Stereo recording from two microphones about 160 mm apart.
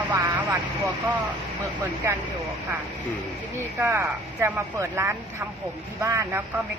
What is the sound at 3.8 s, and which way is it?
Speech, 15° right (ahead or behind).